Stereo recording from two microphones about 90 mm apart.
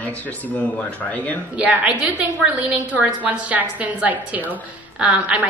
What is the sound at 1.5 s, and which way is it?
A woman's voice, 15° right (ahead or behind).